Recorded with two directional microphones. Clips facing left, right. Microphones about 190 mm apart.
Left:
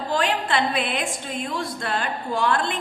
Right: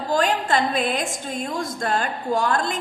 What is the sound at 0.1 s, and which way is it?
A woman's voice, 45° right (ahead or behind).